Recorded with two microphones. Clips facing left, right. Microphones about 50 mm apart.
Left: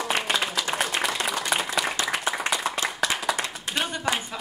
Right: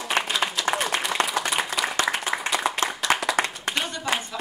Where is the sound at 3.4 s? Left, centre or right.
Right.